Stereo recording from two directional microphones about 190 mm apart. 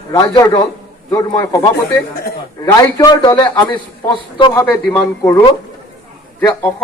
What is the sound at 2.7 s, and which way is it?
A man's voice, 20° left (ahead or behind).